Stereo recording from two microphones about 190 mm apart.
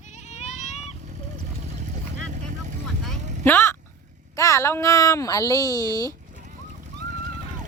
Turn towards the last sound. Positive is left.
turn(degrees=20)  # may be behind; listen again after turning